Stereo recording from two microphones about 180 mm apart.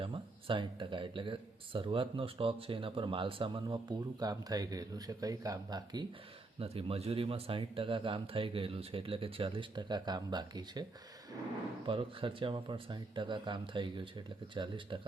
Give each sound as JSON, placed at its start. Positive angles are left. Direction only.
{"t": 0.0, "sound": "speech", "side_deg": -30}
{"t": 11.9, "sound": "speech", "side_deg": -30}